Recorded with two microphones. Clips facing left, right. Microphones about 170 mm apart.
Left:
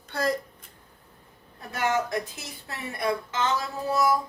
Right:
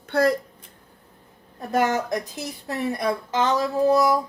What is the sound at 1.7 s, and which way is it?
Speech, 40° right (ahead or behind).